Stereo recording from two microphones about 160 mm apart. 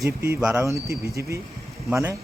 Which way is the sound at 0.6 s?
20° right (ahead or behind).